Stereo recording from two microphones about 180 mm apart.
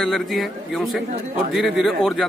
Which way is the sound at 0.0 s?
Centre (ahead or behind).